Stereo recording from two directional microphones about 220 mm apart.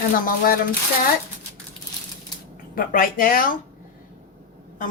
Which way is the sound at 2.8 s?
40° left (ahead or behind).